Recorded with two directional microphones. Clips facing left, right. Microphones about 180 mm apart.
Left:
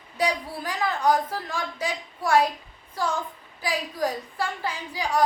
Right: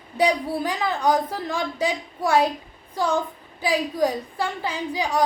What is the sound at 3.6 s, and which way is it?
A woman's voice, 20° right (ahead or behind).